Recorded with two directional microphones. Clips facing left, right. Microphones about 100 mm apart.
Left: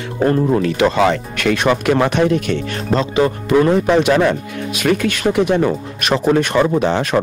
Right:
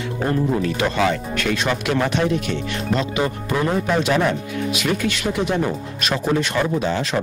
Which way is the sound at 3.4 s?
80° left.